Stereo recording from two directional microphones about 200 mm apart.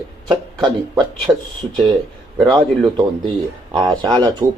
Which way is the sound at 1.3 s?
10° right (ahead or behind).